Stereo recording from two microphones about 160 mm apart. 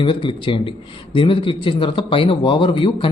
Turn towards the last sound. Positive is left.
turn(degrees=35)  # may be behind; listen again after turning